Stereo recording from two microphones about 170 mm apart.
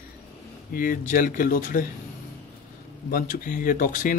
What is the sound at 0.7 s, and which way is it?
Speech, 55° left (ahead or behind).